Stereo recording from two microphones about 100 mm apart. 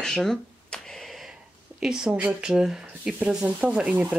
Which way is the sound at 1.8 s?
5° right (ahead or behind).